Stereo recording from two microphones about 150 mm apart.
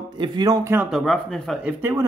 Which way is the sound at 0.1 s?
30° right (ahead or behind).